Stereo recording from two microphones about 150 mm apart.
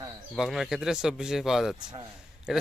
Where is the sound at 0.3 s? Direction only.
Centre (ahead or behind).